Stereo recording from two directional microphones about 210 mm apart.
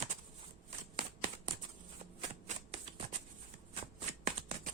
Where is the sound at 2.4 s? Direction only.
30° right (ahead or behind).